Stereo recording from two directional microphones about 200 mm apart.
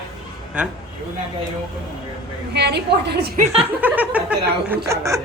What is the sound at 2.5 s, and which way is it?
Speech, 55° right (ahead or behind).